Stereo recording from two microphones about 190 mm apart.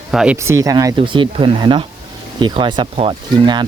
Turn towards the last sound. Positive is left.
turn(degrees=-25)  # may be behind; listen again after turning